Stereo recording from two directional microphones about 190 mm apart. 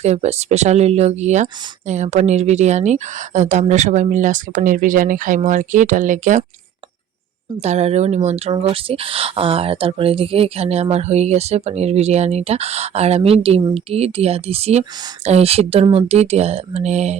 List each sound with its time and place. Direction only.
0.0 s speech: 35° right (ahead or behind)
7.6 s speech: 35° right (ahead or behind)
13.6 s speech: 20° right (ahead or behind)
13.9 s speech: 35° right (ahead or behind)